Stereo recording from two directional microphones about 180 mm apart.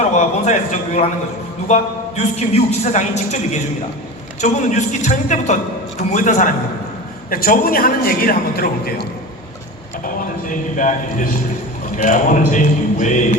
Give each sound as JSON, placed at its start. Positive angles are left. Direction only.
{"t": 0.0, "sound": "a man's voice", "side_deg": 40}
{"t": 4.4, "sound": "a man's voice", "side_deg": 40}
{"t": 10.2, "sound": "a sound", "side_deg": 45}
{"t": 11.9, "sound": "speech", "side_deg": 45}